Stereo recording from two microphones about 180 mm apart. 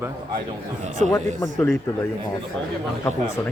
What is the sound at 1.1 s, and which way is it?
Speech, 15° left (ahead or behind).